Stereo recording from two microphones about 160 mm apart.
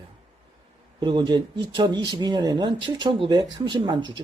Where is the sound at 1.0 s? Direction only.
30° right (ahead or behind).